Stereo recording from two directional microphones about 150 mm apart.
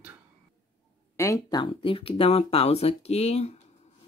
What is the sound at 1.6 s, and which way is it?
Speech, 35° left (ahead or behind).